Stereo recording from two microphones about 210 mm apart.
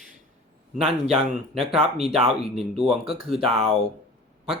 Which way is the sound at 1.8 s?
30° right (ahead or behind).